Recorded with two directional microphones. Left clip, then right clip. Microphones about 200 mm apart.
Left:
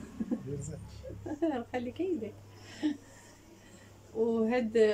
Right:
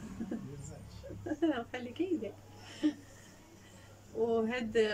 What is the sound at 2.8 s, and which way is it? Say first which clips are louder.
Speech: even; 25° left (ahead or behind).